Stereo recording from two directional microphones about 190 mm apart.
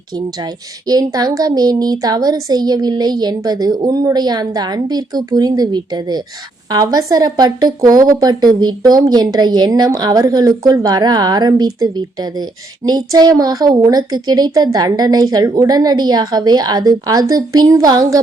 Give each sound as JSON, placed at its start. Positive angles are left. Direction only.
{"t": 0.9, "sound": "speech", "side_deg": -20}